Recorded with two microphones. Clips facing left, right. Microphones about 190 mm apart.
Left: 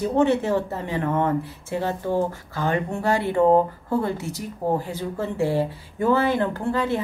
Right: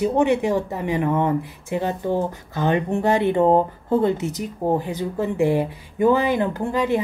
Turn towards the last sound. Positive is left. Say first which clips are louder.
# right 2 dB
turn(degrees=-15)  # may be behind; listen again after turning